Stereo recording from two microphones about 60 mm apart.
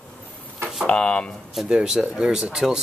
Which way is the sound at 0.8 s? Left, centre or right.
Centre.